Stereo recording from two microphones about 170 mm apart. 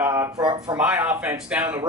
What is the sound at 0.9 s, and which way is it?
Speech, 10° right (ahead or behind).